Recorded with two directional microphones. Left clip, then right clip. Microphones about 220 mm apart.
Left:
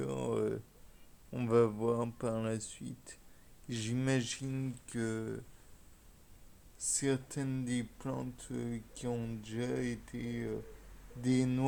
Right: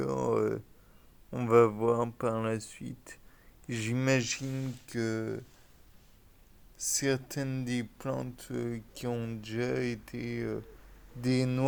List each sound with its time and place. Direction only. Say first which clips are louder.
0.0 s a sound: right 6 dB; 20° right (ahead or behind)
1.3 s speech: right 6 dB; 15° right (ahead or behind)
6.7 s speech: right 4 dB; 35° right (ahead or behind)